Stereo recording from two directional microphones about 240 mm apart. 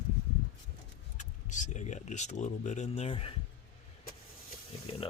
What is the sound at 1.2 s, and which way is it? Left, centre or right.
Speech, left.